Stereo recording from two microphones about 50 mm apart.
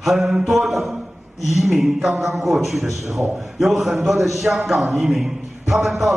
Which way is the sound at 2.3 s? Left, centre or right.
Centre.